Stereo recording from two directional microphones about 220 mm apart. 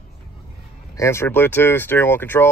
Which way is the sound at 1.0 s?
10° left (ahead or behind).